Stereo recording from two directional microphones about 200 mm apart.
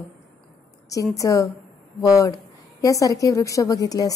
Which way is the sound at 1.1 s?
15° left (ahead or behind).